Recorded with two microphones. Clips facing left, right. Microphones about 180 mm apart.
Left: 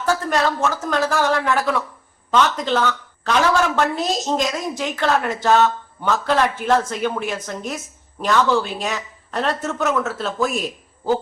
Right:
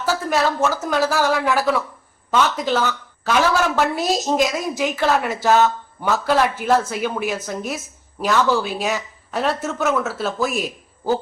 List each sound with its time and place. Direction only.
0.0 s a woman's voice: 5° right (ahead or behind)